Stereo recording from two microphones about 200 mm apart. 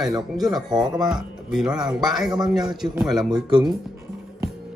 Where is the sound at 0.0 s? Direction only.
Centre (ahead or behind).